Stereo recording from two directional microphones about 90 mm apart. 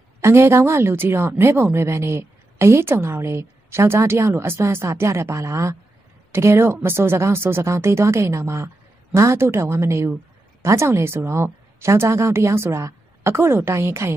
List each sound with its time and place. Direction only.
0.2 s a woman's voice: 30° right (ahead or behind)